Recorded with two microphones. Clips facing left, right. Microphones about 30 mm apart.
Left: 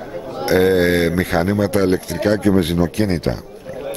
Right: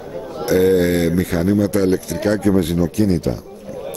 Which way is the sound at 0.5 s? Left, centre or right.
Left.